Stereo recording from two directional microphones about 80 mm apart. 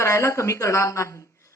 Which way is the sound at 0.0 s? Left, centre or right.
Left.